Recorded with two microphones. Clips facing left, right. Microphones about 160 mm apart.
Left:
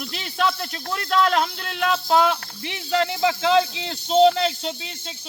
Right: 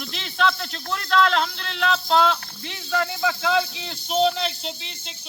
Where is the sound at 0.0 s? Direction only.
5° left (ahead or behind).